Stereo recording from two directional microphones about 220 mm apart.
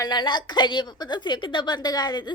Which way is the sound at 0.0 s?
20° left (ahead or behind).